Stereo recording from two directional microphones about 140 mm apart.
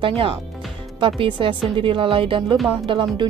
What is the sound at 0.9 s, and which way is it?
Speech, 40° right (ahead or behind).